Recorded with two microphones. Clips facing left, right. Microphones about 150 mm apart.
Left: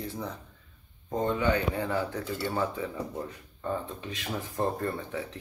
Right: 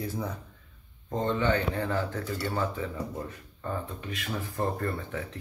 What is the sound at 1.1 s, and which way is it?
Speech, 10° left (ahead or behind).